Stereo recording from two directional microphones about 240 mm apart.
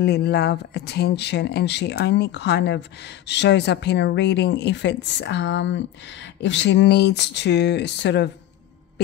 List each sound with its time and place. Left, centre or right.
0.0 s speech: left